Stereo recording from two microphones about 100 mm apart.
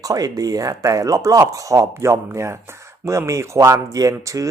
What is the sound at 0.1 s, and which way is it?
Speech, 35° right (ahead or behind).